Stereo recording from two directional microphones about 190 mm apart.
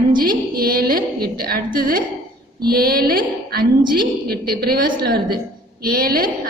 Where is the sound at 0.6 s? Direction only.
50° right (ahead or behind).